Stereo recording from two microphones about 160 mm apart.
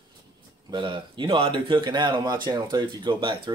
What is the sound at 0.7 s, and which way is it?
Speech, 30° right (ahead or behind).